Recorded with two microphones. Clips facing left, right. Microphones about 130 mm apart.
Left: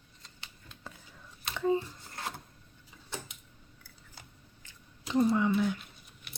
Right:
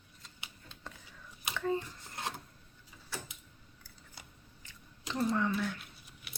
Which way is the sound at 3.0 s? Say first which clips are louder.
Left 2 dB; 20° left (ahead or behind).